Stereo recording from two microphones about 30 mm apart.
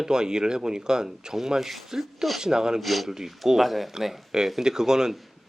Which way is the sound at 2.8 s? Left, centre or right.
Centre.